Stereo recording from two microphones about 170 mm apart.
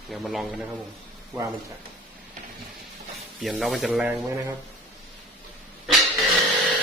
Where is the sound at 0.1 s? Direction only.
Centre (ahead or behind).